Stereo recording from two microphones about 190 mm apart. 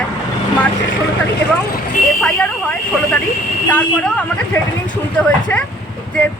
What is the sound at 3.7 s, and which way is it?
Speech, 5° left (ahead or behind).